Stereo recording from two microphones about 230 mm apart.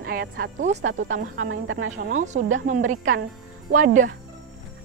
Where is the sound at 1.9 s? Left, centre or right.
Right.